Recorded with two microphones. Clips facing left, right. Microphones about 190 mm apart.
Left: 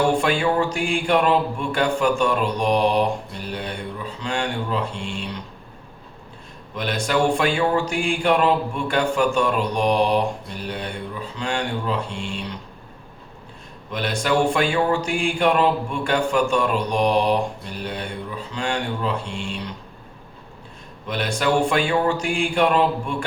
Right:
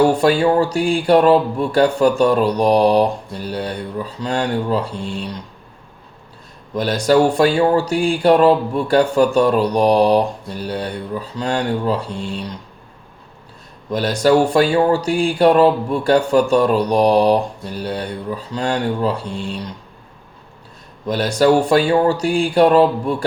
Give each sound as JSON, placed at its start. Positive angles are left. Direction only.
{"t": 0.0, "sound": "speech", "side_deg": -40}
{"t": 6.7, "sound": "speech", "side_deg": -40}
{"t": 13.9, "sound": "speech", "side_deg": -40}
{"t": 21.1, "sound": "speech", "side_deg": -40}